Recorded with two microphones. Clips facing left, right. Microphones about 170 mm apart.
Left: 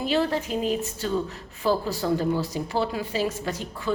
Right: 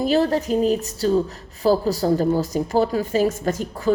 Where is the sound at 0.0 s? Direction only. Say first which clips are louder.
Right 5 dB; 40° right (ahead or behind).